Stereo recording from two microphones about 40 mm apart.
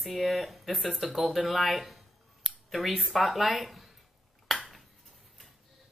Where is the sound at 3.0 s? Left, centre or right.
Centre.